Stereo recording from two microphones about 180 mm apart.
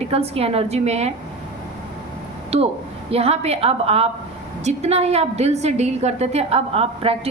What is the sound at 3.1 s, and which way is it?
A woman's voice, 35° right (ahead or behind).